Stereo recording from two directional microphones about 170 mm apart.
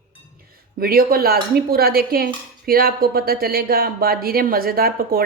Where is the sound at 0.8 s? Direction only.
60° right (ahead or behind).